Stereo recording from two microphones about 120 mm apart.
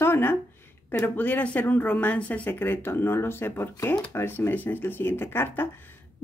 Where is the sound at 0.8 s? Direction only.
15° left (ahead or behind).